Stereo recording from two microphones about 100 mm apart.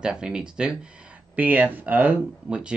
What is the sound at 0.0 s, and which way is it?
Speech, 10° right (ahead or behind).